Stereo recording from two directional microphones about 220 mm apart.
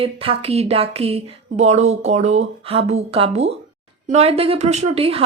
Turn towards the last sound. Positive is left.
turn(degrees=-25)  # may be behind; listen again after turning